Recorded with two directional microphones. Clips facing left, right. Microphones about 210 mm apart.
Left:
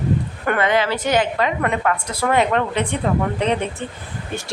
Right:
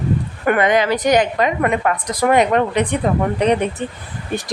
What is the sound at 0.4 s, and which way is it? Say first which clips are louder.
A woman's voice: right 4 dB; 15° right (ahead or behind).